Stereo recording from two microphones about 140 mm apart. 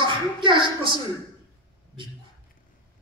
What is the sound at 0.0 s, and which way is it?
Speech, 35° right (ahead or behind).